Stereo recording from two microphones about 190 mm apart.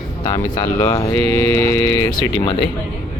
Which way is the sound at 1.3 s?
15° left (ahead or behind).